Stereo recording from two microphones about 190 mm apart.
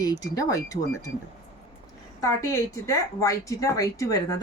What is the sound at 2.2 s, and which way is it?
A woman's voice, 15° left (ahead or behind).